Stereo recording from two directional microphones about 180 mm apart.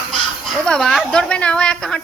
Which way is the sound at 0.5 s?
5° left (ahead or behind).